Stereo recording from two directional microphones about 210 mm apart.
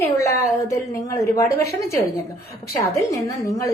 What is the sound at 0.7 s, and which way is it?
A woman's voice, 15° left (ahead or behind).